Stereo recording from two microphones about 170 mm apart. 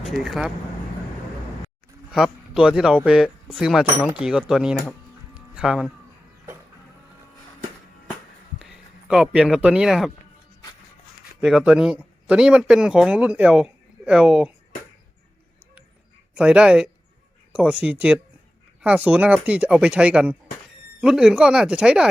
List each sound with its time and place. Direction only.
0.0 s speech: centre (ahead or behind)
2.0 s speech: 5° right (ahead or behind)
8.5 s speech: 5° right (ahead or behind)
11.3 s speech: 5° right (ahead or behind)
16.3 s speech: 5° right (ahead or behind)